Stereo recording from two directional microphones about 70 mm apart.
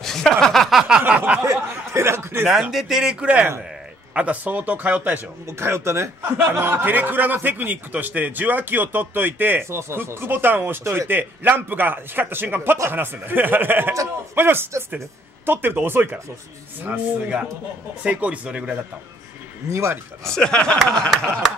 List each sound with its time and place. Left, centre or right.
0.0 s a sound: centre
1.0 s a man's voice: centre
1.4 s speech: right
2.6 s a man's voice: centre
5.5 s a man's voice: right; by 18.8 s centre
19.7 s speech: right
20.2 s speech: centre